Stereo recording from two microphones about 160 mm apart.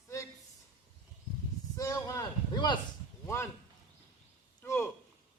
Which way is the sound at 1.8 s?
20° left (ahead or behind).